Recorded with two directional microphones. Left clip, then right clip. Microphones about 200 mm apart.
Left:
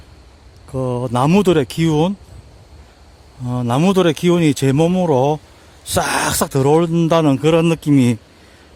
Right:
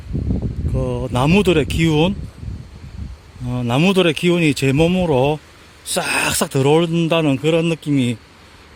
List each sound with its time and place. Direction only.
0.8 s a man's voice: 10° left (ahead or behind)
3.4 s a man's voice: 10° left (ahead or behind)